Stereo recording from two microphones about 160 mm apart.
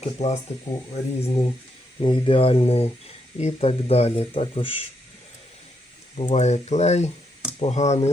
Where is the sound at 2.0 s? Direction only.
35° left (ahead or behind).